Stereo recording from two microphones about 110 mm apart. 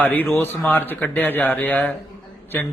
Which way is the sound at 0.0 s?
15° left (ahead or behind).